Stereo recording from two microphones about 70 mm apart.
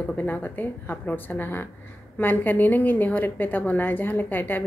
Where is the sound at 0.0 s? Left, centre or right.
Left.